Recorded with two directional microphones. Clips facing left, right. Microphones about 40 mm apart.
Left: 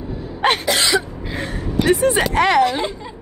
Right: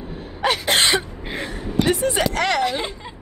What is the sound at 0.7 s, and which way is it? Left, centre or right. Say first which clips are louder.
Cough: left 1 dB; right.